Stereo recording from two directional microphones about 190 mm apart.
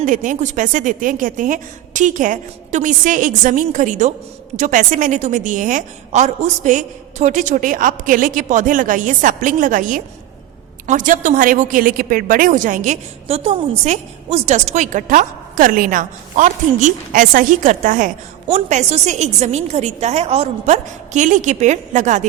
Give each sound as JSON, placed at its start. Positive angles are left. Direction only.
{"t": 0.0, "sound": "a woman's voice", "side_deg": -45}